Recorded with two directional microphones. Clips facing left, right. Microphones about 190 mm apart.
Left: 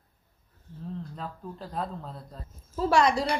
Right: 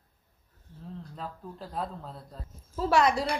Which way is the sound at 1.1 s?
Centre (ahead or behind).